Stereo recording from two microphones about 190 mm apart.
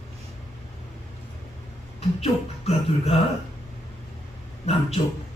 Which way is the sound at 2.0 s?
35° left (ahead or behind).